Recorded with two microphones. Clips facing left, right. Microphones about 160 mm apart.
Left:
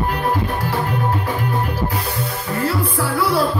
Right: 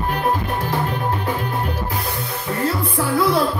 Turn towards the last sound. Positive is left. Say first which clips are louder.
# right 1 dB
turn(degrees=-20)  # may be behind; listen again after turning